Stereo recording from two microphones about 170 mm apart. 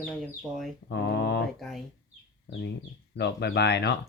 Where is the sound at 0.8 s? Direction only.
80° left.